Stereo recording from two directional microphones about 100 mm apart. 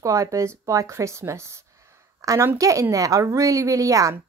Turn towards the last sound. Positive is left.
turn(degrees=-35)  # may be behind; listen again after turning